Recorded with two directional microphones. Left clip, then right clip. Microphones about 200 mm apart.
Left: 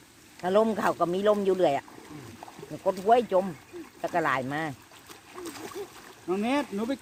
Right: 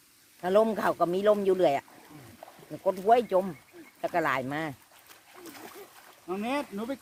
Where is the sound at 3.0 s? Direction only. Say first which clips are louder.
Left 1 dB; 45° right (ahead or behind).